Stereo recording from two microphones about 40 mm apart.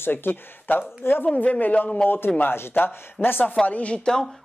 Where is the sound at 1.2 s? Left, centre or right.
Left.